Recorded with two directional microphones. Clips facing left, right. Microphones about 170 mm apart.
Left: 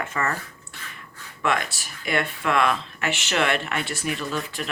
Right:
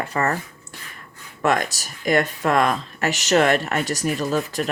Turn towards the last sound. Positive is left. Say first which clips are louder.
# right 7 dB
turn(degrees=-40)  # may be behind; listen again after turning